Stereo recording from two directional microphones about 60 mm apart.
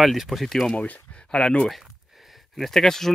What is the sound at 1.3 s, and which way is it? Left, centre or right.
Speech, centre.